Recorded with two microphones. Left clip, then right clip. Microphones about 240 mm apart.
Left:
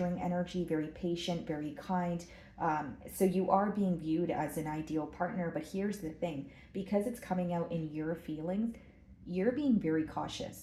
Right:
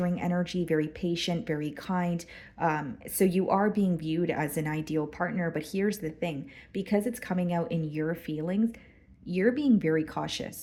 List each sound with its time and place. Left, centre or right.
0.0 s speech: right